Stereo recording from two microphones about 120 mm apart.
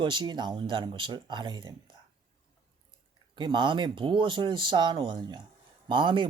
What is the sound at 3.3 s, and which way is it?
Speech, 40° right (ahead or behind).